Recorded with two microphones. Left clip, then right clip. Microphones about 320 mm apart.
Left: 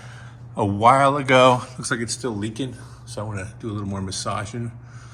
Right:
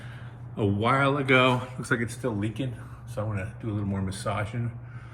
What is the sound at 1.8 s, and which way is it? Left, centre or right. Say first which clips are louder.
A man's voice: left 3 dB; centre.